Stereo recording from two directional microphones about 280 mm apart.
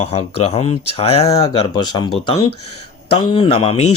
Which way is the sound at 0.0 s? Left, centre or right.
Left.